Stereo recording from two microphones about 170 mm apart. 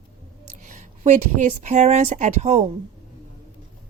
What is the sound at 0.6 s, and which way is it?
Speech, 50° right (ahead or behind).